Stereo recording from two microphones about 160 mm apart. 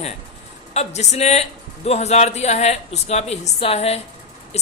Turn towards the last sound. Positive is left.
turn(degrees=40)  # may be behind; listen again after turning